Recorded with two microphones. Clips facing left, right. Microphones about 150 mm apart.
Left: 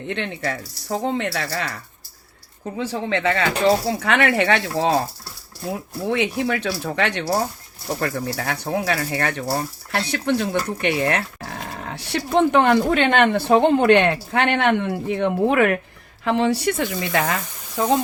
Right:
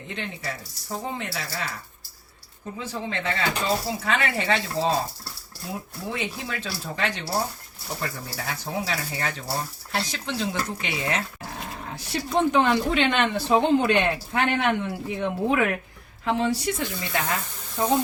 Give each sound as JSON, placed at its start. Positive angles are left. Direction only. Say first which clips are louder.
{"t": 0.1, "sound": "speech", "louder": "left 7 dB", "side_deg": 65}
{"t": 6.1, "sound": "speech", "louder": "left 10 dB", "side_deg": 70}
{"t": 11.8, "sound": "speech", "louder": "left 5 dB", "side_deg": 75}